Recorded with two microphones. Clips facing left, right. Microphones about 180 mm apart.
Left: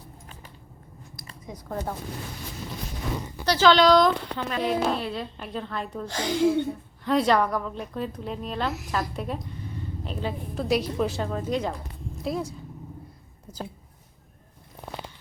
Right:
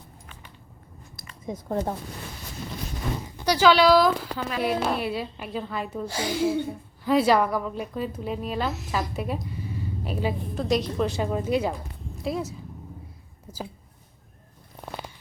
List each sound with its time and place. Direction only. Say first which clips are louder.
1.5 s speech: right 5 dB; 25° right (ahead or behind)
3.4 s speech: even; 10° right (ahead or behind)
8.9 s a sound: right 1 dB; 5° right (ahead or behind)
10.5 s speech: left 2 dB; 5° left (ahead or behind)
11.2 s a woman's voice: right 3 dB; 10° right (ahead or behind)